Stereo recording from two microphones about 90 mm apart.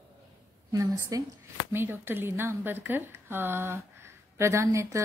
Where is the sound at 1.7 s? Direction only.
25° right (ahead or behind).